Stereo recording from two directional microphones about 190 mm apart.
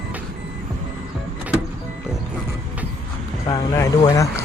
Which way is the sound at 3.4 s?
15° left (ahead or behind).